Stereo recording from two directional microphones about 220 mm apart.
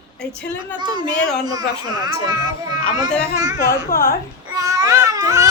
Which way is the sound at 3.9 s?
40° left (ahead or behind).